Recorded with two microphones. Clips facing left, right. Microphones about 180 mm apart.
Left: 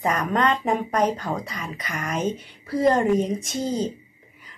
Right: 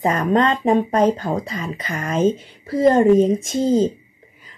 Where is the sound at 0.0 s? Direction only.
25° right (ahead or behind).